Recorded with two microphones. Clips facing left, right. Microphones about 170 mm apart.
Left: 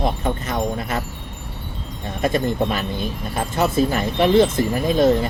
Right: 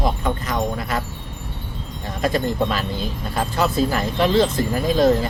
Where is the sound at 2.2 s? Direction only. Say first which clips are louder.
Left 1 dB; 20° left (ahead or behind).